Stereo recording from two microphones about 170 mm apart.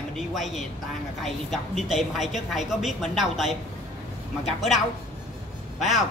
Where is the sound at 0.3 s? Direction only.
Centre (ahead or behind).